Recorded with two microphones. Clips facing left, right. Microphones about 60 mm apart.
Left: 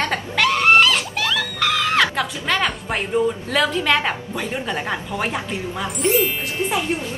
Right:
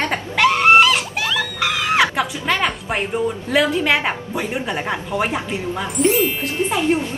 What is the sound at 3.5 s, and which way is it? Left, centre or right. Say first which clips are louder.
A woman's voice: right 6 dB; centre.